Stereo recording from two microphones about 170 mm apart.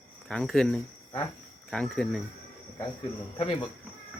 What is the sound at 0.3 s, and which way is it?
Speech, 5° left (ahead or behind).